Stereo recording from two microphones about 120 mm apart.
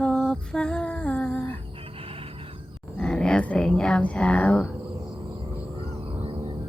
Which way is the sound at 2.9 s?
10° left (ahead or behind).